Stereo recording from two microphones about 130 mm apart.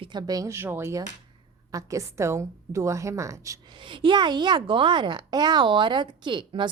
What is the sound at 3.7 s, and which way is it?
A woman's voice, 40° right (ahead or behind).